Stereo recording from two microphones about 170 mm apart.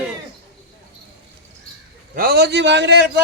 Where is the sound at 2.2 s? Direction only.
65° right (ahead or behind); by 3.2 s 85° right.